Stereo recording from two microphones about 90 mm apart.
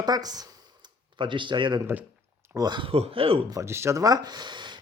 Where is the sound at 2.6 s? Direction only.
55° right (ahead or behind).